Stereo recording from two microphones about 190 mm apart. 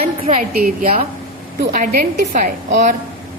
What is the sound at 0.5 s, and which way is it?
A woman's voice, 45° right (ahead or behind).